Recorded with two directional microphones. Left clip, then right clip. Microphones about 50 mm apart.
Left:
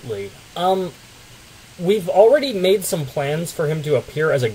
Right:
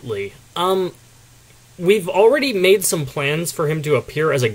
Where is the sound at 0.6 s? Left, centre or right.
Right.